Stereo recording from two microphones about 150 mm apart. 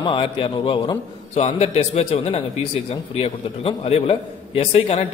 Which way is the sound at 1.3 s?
45° left (ahead or behind).